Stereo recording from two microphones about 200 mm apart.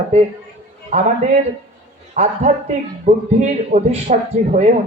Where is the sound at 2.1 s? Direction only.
35° right (ahead or behind).